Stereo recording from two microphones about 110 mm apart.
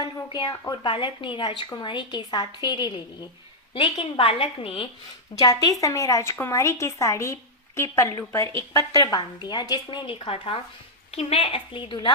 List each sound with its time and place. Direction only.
0.0 s a sound: 45° left (ahead or behind)
0.6 s a woman's voice: 40° left (ahead or behind)
3.8 s a woman's voice: 55° left (ahead or behind)
5.3 s a woman's voice: 35° left (ahead or behind); by 11.9 s 50° left (ahead or behind)